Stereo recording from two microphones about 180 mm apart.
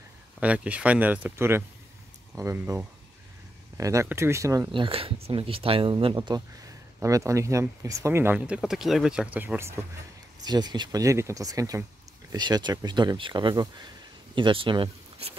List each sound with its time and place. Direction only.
0.4 s speech: 5° right (ahead or behind)
10.4 s speech: 25° right (ahead or behind)